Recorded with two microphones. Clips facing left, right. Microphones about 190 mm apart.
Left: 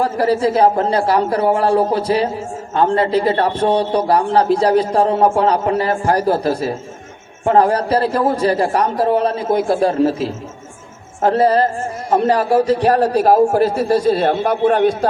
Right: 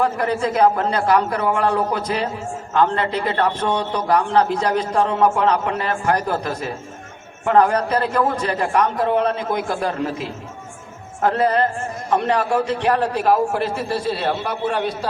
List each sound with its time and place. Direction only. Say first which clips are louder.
0.0 s a man's voice: left 4 dB; 35° left (ahead or behind); by 14.9 s 50° left (ahead or behind)